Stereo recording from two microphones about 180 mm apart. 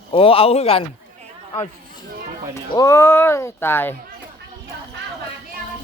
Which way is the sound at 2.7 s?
15° left (ahead or behind).